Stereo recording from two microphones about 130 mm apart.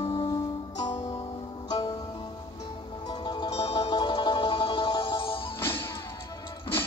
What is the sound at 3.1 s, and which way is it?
Music, 35° left (ahead or behind).